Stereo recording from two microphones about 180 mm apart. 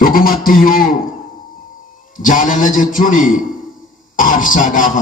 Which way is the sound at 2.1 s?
45° left (ahead or behind).